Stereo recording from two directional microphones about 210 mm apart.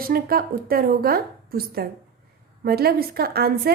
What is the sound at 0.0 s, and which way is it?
A woman's voice, 45° right (ahead or behind).